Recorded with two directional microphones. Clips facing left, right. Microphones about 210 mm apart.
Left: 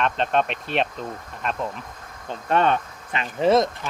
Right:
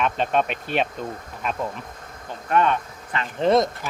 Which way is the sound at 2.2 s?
30° left (ahead or behind).